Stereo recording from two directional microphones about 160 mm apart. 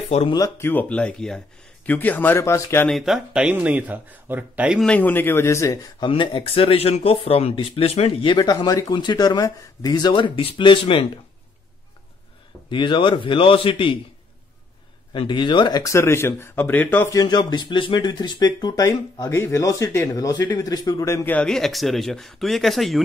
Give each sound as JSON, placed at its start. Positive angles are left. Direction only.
{"t": 0.3, "sound": "speech", "side_deg": 20}
{"t": 2.9, "sound": "speech", "side_deg": 0}
{"t": 4.8, "sound": "speech", "side_deg": 10}
{"t": 6.0, "sound": "speech", "side_deg": 30}
{"t": 12.6, "sound": "speech", "side_deg": 30}
{"t": 15.1, "sound": "speech", "side_deg": 30}